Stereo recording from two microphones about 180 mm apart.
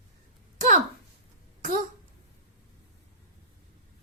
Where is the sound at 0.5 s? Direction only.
45° right (ahead or behind).